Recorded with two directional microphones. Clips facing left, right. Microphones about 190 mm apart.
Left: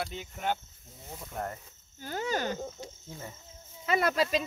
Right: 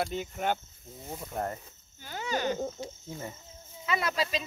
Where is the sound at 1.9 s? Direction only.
45° left (ahead or behind).